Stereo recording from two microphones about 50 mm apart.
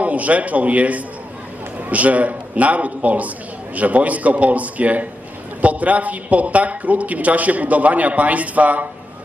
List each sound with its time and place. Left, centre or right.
0.0 s a man's voice: right